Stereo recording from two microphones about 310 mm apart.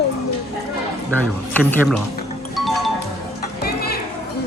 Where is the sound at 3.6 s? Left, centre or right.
Left.